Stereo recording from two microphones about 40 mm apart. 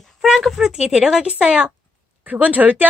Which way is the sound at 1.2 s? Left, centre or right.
Right.